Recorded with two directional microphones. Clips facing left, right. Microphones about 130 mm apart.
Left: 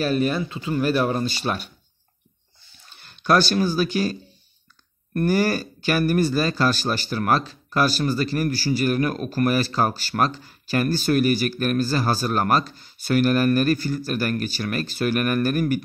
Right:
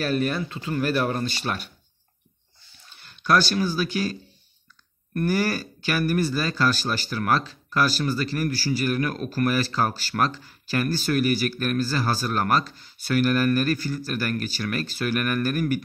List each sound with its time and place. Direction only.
0.0 s speech: 20° left (ahead or behind)
3.2 s speech: 25° left (ahead or behind)
5.2 s speech: 25° left (ahead or behind)